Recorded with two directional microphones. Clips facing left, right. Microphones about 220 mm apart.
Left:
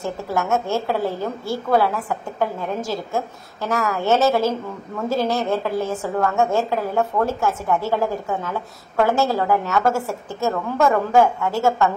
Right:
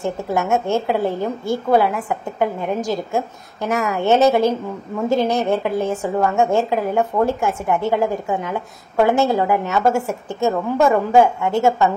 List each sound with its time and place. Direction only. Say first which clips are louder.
0.0 s a woman's voice: right 3 dB; 20° right (ahead or behind)